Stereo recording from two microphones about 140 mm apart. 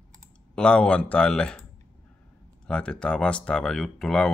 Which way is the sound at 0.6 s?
5° left (ahead or behind).